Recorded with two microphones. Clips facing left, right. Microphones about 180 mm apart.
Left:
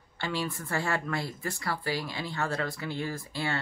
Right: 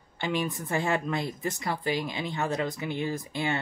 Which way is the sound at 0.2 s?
20° right (ahead or behind).